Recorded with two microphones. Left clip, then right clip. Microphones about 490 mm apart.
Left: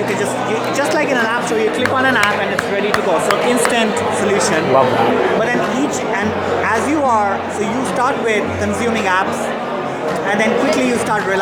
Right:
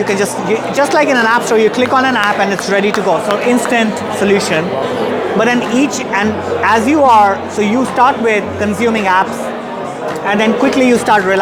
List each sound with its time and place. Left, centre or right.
0.8 s speech: right
6.7 s speech: right